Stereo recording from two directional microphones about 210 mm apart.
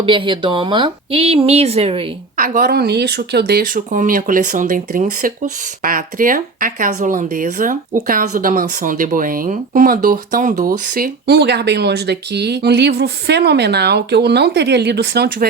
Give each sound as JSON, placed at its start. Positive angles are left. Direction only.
{"t": 0.0, "sound": "speech", "side_deg": -25}
{"t": 2.3, "sound": "a woman's voice", "side_deg": -40}